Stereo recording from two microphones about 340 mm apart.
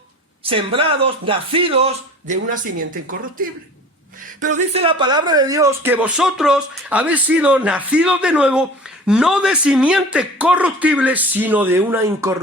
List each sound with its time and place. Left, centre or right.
0.4 s speech: centre
4.5 s speech: centre